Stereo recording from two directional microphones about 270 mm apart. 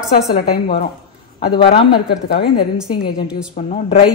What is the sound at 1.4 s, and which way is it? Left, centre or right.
A woman's voice, centre.